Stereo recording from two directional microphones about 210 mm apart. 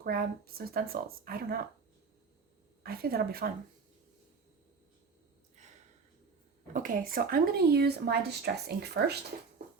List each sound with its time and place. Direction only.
0.0 s speech: 45° right (ahead or behind)
2.8 s speech: 45° right (ahead or behind)
6.7 s speech: 40° right (ahead or behind)